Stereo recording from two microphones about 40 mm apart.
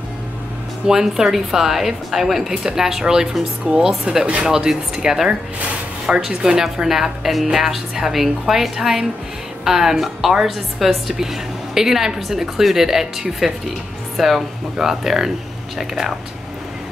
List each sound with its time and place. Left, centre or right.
0.8 s speech: centre